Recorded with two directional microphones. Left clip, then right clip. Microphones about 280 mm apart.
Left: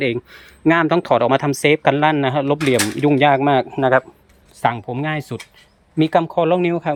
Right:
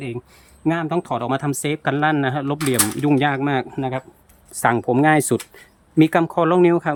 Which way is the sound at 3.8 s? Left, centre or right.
Left.